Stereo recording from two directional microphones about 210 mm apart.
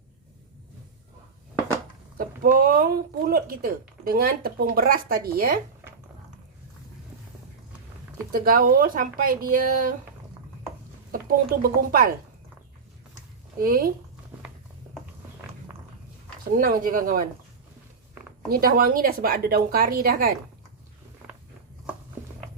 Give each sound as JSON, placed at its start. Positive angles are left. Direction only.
{"t": 2.1, "sound": "speech", "side_deg": -40}
{"t": 8.3, "sound": "speech", "side_deg": -40}
{"t": 11.1, "sound": "speech", "side_deg": -45}
{"t": 13.6, "sound": "speech", "side_deg": -45}
{"t": 16.5, "sound": "speech", "side_deg": -45}
{"t": 18.4, "sound": "speech", "side_deg": -45}